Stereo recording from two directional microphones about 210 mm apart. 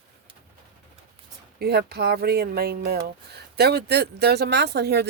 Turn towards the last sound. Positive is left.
turn(degrees=-50)  # may be behind; listen again after turning